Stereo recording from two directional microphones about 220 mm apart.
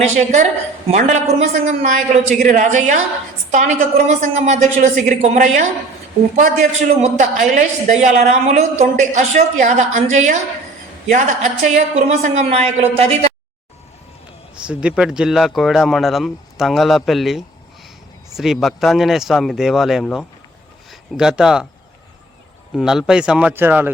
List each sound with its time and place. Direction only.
0.2 s a woman's voice: 30° right (ahead or behind)
14.7 s speech: 5° right (ahead or behind)
22.7 s speech: 5° right (ahead or behind)